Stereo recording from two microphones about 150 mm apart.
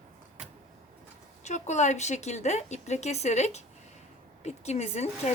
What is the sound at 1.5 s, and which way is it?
A woman's voice, 50° left (ahead or behind).